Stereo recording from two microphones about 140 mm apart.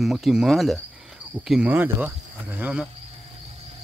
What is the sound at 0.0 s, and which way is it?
Speech, centre (ahead or behind).